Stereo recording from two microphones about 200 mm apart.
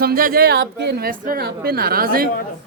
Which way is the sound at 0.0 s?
45° right (ahead or behind).